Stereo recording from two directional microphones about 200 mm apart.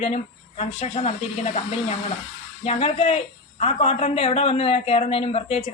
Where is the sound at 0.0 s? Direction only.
30° left (ahead or behind).